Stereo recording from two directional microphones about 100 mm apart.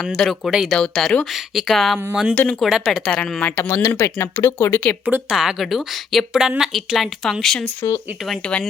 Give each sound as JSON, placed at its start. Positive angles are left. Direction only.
{"t": 0.0, "sound": "speech", "side_deg": 0}
{"t": 2.3, "sound": "speech", "side_deg": 15}
{"t": 2.6, "sound": "speech", "side_deg": 0}
{"t": 3.4, "sound": "speech", "side_deg": 15}
{"t": 3.8, "sound": "speech", "side_deg": 30}
{"t": 5.0, "sound": "speech", "side_deg": -5}
{"t": 7.8, "sound": "speech", "side_deg": 30}